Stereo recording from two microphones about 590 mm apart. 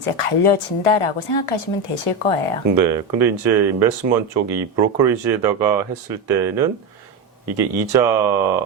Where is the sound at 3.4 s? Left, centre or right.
Right.